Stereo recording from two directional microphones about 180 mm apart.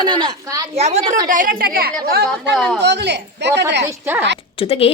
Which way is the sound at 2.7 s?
70° right (ahead or behind).